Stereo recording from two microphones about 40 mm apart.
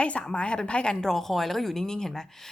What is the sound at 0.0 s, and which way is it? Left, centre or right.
Speech, left.